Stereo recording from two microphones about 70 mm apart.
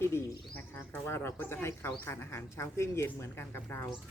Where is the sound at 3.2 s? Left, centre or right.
Left.